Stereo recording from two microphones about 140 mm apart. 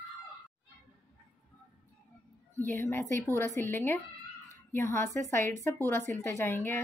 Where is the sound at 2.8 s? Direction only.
20° left (ahead or behind).